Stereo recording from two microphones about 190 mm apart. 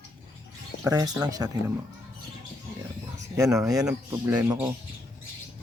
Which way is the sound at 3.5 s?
5° right (ahead or behind).